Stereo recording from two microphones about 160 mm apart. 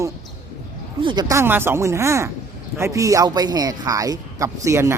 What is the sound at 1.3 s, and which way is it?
A man's voice, 15° right (ahead or behind).